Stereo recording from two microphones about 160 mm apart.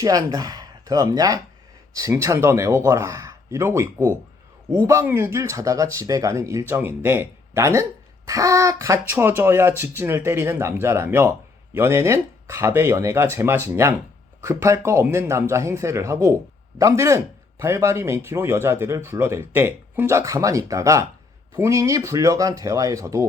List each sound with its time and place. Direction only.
0.0 s speech: 20° right (ahead or behind)